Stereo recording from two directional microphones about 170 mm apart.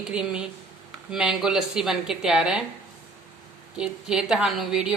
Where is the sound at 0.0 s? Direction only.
5° right (ahead or behind).